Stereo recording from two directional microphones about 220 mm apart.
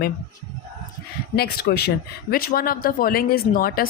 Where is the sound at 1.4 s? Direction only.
45° left (ahead or behind).